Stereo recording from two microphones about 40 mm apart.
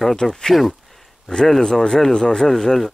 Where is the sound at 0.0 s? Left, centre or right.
Centre.